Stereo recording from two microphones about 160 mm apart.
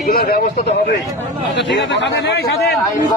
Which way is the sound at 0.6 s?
90° left.